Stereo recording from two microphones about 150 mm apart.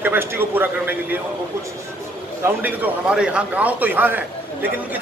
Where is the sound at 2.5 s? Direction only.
10° right (ahead or behind).